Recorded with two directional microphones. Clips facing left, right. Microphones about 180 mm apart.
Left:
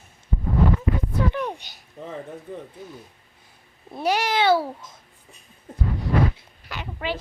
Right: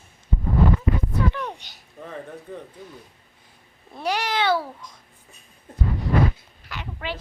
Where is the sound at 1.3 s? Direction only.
10° left (ahead or behind).